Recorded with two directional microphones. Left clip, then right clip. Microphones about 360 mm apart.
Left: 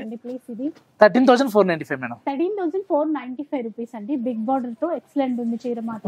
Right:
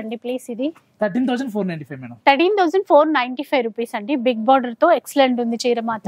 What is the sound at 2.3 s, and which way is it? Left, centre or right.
A woman's voice, centre.